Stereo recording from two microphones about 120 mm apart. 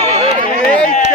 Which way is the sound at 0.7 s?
10° left (ahead or behind).